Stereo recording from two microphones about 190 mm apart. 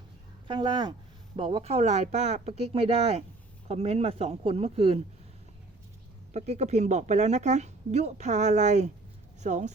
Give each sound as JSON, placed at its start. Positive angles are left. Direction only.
{"t": 0.4, "sound": "speech", "side_deg": -25}
{"t": 6.3, "sound": "speech", "side_deg": -35}